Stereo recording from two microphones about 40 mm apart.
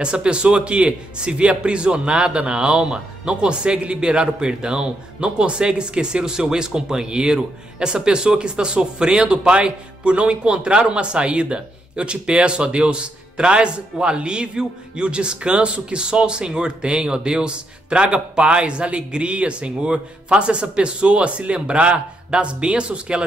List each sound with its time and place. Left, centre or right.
0.0 s a man's voice: right